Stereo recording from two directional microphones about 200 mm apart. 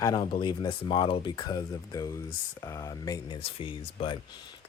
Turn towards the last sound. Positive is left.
turn(degrees=25)  # may be behind; listen again after turning